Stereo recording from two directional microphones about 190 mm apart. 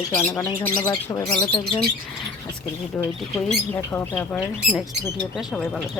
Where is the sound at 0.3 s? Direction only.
10° left (ahead or behind).